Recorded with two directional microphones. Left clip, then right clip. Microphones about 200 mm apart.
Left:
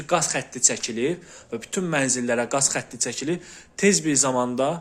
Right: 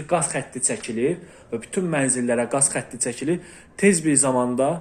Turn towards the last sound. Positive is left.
turn(degrees=20)  # may be behind; listen again after turning